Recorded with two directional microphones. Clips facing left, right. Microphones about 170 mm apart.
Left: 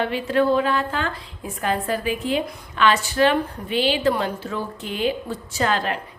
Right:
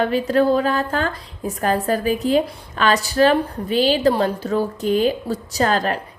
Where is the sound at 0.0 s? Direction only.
40° right (ahead or behind).